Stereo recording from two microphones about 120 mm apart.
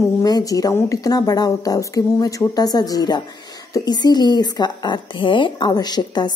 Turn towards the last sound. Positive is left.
turn(degrees=35)  # may be behind; listen again after turning